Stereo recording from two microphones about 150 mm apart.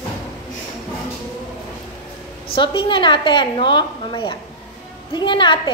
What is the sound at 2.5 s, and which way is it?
A woman's voice, 35° left (ahead or behind).